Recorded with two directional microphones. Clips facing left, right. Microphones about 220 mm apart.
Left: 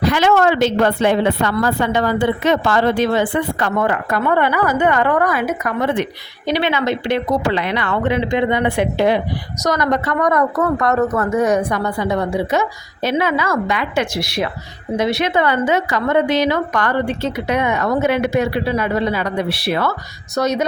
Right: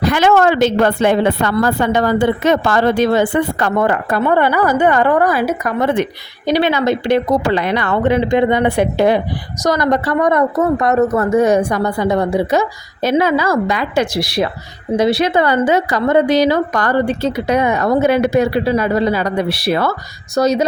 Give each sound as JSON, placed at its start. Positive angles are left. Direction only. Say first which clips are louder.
{"t": 0.0, "sound": "a woman's voice", "louder": "right 2 dB", "side_deg": -50}